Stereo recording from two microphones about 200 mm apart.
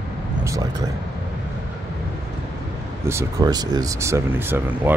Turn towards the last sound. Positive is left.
turn(degrees=-10)  # may be behind; listen again after turning